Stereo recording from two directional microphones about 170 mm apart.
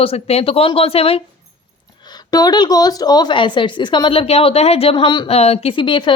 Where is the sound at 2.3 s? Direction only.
25° left (ahead or behind).